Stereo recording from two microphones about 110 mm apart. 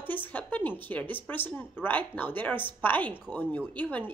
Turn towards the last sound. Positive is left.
turn(degrees=15)  # may be behind; listen again after turning